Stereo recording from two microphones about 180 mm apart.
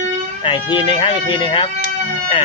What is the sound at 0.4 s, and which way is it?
Speech, 30° left (ahead or behind).